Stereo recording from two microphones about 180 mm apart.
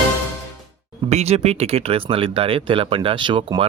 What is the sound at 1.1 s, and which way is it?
Speech, 35° right (ahead or behind).